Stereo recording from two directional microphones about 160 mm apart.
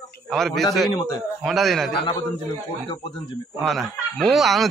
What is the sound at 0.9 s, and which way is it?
Speech, 25° left (ahead or behind).